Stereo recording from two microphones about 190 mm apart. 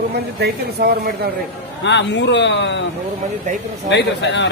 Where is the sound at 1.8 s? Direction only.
65° left (ahead or behind).